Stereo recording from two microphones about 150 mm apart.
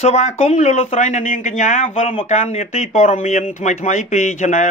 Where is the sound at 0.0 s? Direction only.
50° left (ahead or behind).